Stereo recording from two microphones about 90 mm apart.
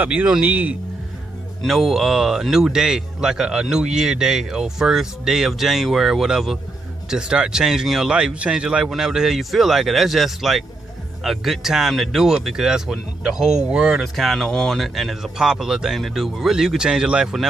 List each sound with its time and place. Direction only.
0.0 s speech: 15° right (ahead or behind)
1.6 s speech: centre (ahead or behind)